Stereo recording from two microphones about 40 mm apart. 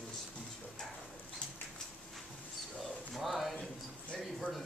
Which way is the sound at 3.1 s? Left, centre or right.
Centre.